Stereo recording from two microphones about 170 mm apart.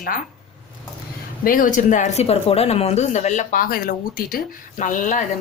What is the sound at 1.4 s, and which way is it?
Speech, 55° left (ahead or behind).